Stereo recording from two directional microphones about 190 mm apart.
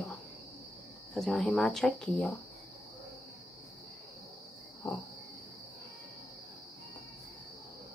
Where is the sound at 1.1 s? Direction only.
Centre (ahead or behind).